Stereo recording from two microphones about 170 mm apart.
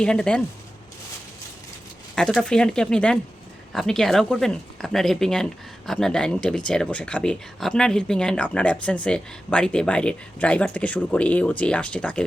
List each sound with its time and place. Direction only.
0.0 s speech: 5° left (ahead or behind)
2.1 s speech: 5° left (ahead or behind)